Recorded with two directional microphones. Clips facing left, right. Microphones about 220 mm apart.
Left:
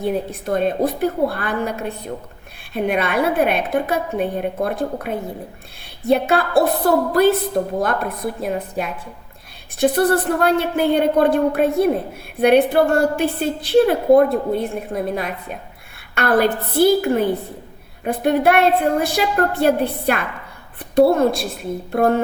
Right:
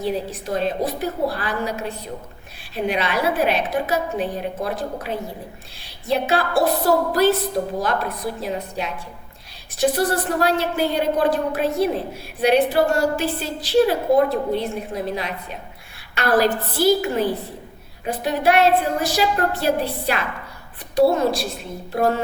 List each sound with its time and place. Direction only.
0.0 s a woman's voice: 55° left (ahead or behind)
9.9 s a woman's voice: 55° left (ahead or behind)